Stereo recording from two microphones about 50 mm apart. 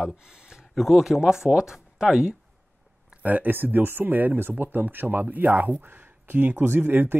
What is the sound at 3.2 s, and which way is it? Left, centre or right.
Speech, right.